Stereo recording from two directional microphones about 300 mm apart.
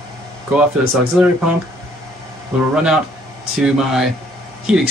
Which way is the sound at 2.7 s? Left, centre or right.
Centre.